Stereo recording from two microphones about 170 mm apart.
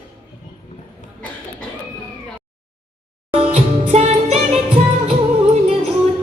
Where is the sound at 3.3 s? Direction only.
35° right (ahead or behind).